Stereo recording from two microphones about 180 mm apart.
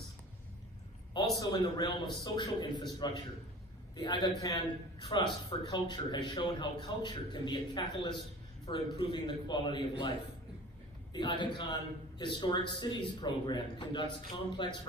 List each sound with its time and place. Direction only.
1.4 s a man's voice: 20° left (ahead or behind)
11.1 s a man's voice: 25° left (ahead or behind)